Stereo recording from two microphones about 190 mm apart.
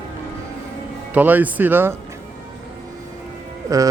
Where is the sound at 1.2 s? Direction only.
10° right (ahead or behind).